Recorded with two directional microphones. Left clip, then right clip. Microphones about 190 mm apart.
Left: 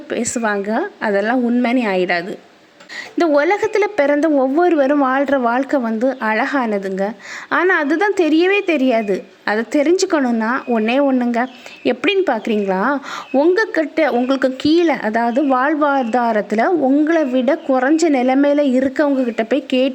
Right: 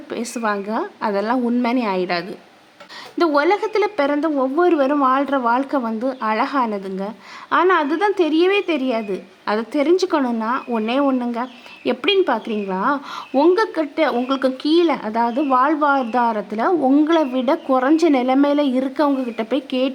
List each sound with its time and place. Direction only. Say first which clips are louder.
0.1 s a woman's voice: left 3 dB; 10° left (ahead or behind)